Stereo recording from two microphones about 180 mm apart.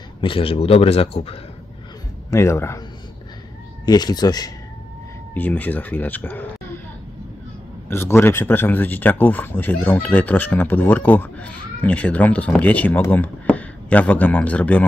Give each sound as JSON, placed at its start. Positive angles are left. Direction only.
{"t": 0.2, "sound": "a man's voice", "side_deg": 30}
{"t": 2.3, "sound": "speech", "side_deg": 15}
{"t": 3.8, "sound": "speech", "side_deg": 20}
{"t": 5.3, "sound": "speech", "side_deg": 10}
{"t": 7.9, "sound": "speech", "side_deg": 15}